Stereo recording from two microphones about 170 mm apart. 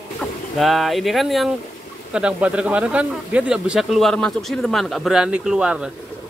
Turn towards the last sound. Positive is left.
turn(degrees=-5)  # may be behind; listen again after turning